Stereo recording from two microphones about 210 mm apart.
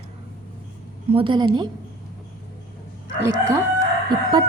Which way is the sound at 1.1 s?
25° right (ahead or behind).